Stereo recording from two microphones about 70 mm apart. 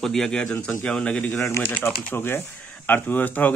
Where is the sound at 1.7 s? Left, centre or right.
Left.